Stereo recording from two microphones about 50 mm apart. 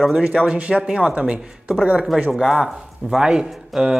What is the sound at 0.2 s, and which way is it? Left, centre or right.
Speech, right.